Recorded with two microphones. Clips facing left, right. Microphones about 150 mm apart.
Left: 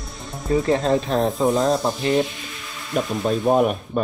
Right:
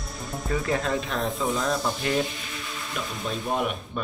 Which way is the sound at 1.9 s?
25° left (ahead or behind).